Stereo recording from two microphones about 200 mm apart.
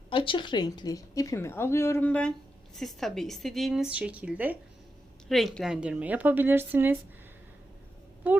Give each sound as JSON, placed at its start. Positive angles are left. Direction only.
{"t": 0.1, "sound": "a woman's voice", "side_deg": 25}
{"t": 8.2, "sound": "a woman's voice", "side_deg": -10}